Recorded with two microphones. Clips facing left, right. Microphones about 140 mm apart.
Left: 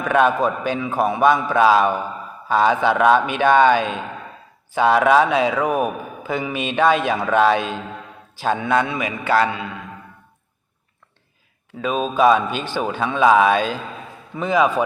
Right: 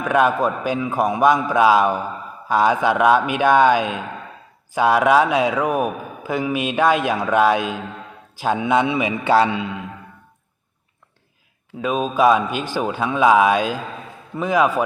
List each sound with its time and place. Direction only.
0.0 s a man's voice: 5° right (ahead or behind); by 9.5 s 25° right (ahead or behind)
11.8 s speech: 5° right (ahead or behind)